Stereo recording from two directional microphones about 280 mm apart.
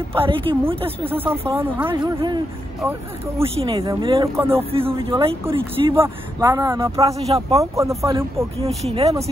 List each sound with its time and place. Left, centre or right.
0.1 s a woman's voice: centre
1.1 s speech: centre
4.6 s a woman's voice: centre
7.7 s a woman's voice: centre